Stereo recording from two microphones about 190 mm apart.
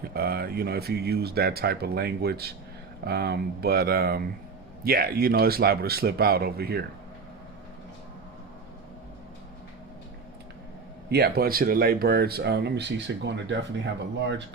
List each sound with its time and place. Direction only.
0.0 s speech: 50° right (ahead or behind)
11.1 s speech: 55° right (ahead or behind)